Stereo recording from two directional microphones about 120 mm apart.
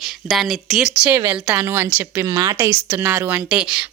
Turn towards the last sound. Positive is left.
turn(degrees=-5)  # may be behind; listen again after turning